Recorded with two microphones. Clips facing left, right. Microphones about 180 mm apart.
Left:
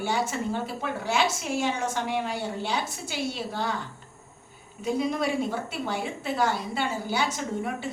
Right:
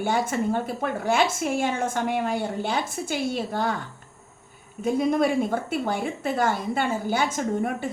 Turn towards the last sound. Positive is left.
turn(degrees=-50)  # may be behind; listen again after turning